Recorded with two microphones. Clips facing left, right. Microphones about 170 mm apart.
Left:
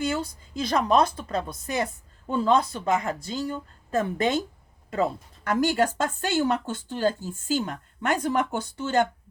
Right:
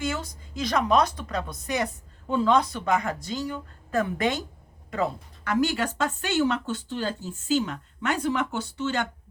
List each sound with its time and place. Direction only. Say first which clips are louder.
0.1 s speech: left 3 dB; 30° left (ahead or behind)
5.5 s speech: left 2 dB; 45° left (ahead or behind)